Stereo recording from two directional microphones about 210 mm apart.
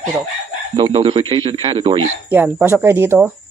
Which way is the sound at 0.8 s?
25° right (ahead or behind).